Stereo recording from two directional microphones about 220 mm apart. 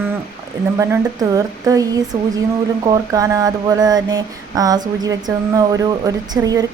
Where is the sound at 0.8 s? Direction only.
15° right (ahead or behind).